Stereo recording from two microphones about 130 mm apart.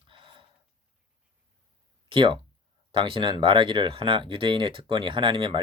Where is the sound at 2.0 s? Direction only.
40° right (ahead or behind).